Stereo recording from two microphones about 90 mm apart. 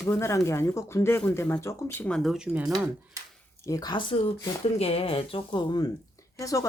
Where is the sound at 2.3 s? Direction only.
10° right (ahead or behind).